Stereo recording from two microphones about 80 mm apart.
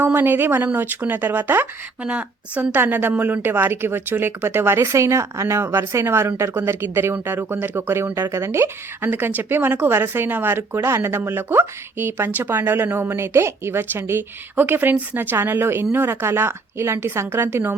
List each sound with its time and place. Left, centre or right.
0.0 s speech: right
2.0 s a woman's voice: centre; by 9.0 s right
9.0 s speech: right